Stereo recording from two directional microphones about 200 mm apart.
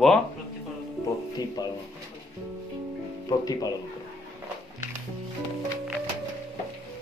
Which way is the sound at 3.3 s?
20° left (ahead or behind).